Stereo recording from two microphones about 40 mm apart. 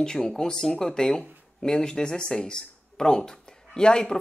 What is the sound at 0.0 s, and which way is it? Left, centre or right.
Speech, centre.